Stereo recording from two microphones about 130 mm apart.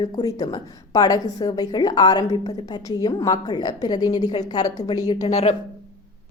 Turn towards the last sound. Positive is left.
turn(degrees=60)  # may be behind; listen again after turning